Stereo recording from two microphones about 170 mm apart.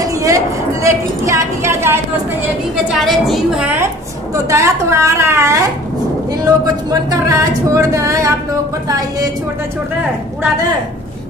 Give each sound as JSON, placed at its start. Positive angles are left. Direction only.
{"t": 0.0, "sound": "a sound", "side_deg": -20}
{"t": 0.8, "sound": "speech", "side_deg": -15}
{"t": 2.9, "sound": "a woman's voice", "side_deg": 0}
{"t": 4.5, "sound": "speech", "side_deg": -15}